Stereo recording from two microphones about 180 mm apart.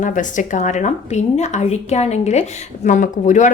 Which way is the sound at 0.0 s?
45° left (ahead or behind).